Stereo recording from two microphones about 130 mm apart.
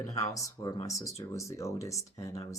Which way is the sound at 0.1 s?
25° left (ahead or behind).